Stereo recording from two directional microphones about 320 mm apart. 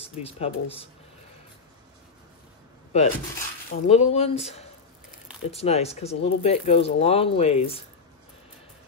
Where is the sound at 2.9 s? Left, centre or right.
Left.